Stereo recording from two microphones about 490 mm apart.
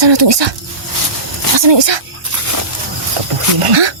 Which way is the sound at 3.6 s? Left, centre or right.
Right.